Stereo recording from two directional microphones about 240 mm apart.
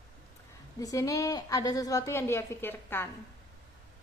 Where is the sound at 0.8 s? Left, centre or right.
Centre.